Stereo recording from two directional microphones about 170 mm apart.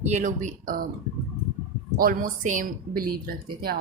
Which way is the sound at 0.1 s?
45° right (ahead or behind).